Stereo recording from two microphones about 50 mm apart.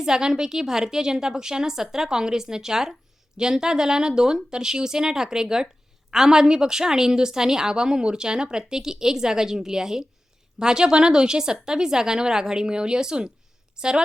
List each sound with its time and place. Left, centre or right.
0.0 s a woman's voice: centre